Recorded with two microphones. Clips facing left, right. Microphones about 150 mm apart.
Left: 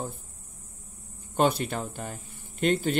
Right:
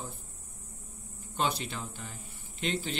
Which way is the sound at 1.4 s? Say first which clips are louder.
Left 8 dB; 50° left (ahead or behind).